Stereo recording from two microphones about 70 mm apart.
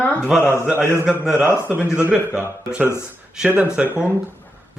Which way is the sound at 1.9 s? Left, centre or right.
Centre.